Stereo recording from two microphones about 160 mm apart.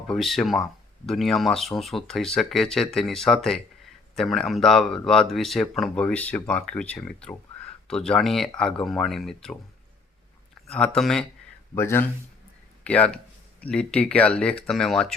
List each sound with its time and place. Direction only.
0.1 s speech: centre (ahead or behind)
10.7 s speech: 5° left (ahead or behind)
11.7 s speech: 15° left (ahead or behind)